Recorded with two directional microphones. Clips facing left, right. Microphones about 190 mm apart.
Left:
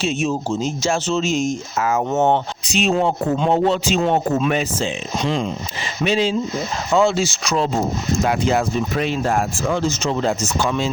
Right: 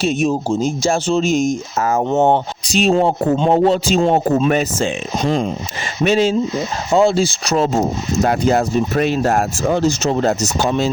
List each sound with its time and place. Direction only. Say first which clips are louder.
1.0 s speech: right 4 dB; 55° right (ahead or behind)
1.8 s speech: right 2 dB; 35° right (ahead or behind)
2.1 s speech: right 3 dB; 15° right (ahead or behind)
2.6 s speech: right 4 dB; 35° right (ahead or behind)
6.9 s speech: right 3 dB; 35° right (ahead or behind)